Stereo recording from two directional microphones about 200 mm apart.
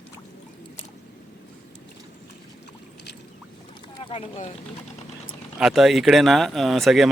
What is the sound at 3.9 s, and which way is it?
Speech, 25° left (ahead or behind).